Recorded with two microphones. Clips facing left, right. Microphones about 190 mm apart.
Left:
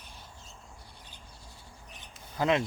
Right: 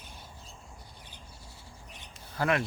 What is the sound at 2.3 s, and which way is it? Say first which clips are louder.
Speech: left 2 dB; 20° left (ahead or behind).